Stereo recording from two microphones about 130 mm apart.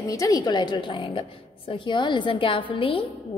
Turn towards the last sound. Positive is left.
turn(degrees=45)  # may be behind; listen again after turning